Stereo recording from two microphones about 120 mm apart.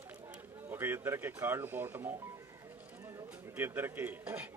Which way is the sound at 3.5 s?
20° right (ahead or behind).